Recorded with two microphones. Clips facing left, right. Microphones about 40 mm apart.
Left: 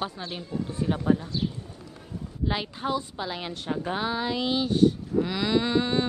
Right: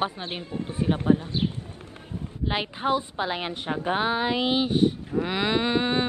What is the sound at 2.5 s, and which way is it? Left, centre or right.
A woman's voice, right.